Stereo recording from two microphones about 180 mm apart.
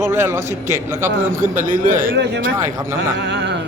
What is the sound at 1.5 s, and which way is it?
Speech, 50° right (ahead or behind).